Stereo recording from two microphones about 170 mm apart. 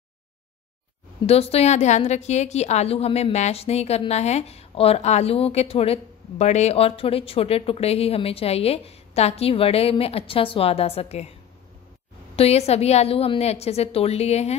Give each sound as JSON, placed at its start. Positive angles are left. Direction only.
{"t": 1.2, "sound": "a woman's voice", "side_deg": 35}
{"t": 12.4, "sound": "a woman's voice", "side_deg": 40}